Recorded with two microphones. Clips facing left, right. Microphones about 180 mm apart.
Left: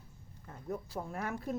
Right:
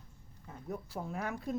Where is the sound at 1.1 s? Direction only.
Centre (ahead or behind).